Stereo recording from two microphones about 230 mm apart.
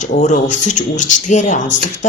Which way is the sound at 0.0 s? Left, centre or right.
Left.